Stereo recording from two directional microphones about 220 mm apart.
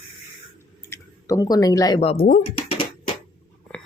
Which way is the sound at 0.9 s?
15° left (ahead or behind).